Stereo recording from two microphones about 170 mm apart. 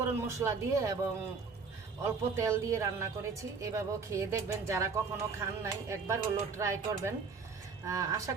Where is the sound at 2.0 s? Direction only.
15° right (ahead or behind).